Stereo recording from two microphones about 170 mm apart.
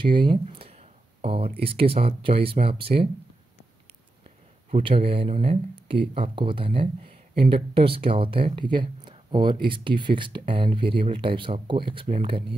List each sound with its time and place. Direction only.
0.0 s a sound: 30° right (ahead or behind)
1.6 s speech: 35° right (ahead or behind)
4.8 s speech: 30° right (ahead or behind)